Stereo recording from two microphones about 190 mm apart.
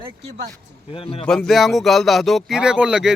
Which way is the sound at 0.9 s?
30° left (ahead or behind).